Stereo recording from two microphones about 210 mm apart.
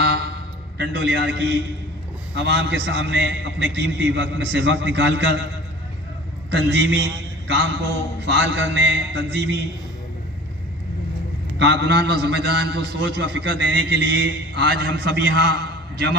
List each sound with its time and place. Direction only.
0.7 s a man's voice: 50° right (ahead or behind)
6.5 s a man's voice: 60° right (ahead or behind)
11.5 s a man's voice: 55° right (ahead or behind)